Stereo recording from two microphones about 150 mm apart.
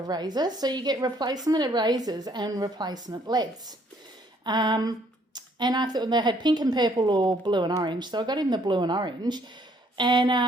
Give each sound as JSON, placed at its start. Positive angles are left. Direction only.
{"t": 0.0, "sound": "speech", "side_deg": -25}